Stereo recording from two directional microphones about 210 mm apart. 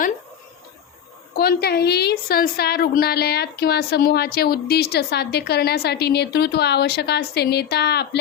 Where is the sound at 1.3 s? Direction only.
50° left (ahead or behind).